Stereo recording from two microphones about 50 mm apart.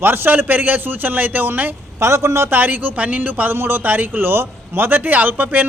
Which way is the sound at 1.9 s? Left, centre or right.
Right.